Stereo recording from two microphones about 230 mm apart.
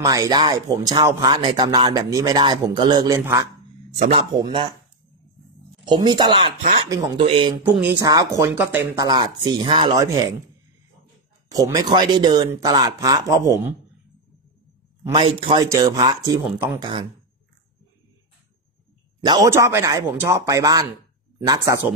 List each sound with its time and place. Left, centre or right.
0.0 s speech: centre
5.9 s speech: centre
7.6 s speech: centre
11.5 s speech: centre
15.0 s speech: right
19.2 s speech: centre